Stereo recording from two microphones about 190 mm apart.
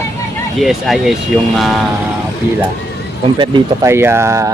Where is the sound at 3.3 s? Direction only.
25° right (ahead or behind).